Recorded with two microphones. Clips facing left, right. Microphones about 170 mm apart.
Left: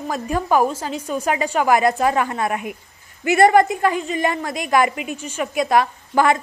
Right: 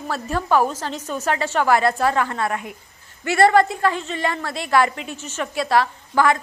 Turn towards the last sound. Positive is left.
turn(degrees=20)  # may be behind; listen again after turning